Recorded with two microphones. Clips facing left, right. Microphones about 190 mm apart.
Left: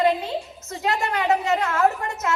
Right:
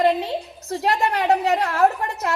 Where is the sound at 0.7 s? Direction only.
35° right (ahead or behind).